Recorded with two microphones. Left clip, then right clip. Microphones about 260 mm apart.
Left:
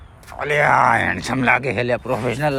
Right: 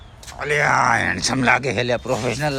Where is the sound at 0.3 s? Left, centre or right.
Centre.